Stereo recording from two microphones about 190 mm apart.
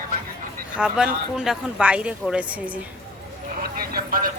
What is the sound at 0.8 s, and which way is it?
Speech, 5° right (ahead or behind).